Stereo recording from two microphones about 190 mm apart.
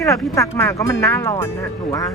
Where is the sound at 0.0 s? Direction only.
15° left (ahead or behind).